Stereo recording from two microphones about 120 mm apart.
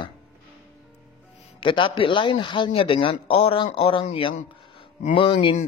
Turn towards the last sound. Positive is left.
turn(degrees=45)  # may be behind; listen again after turning